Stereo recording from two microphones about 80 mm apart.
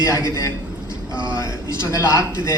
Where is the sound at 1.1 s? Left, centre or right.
Right.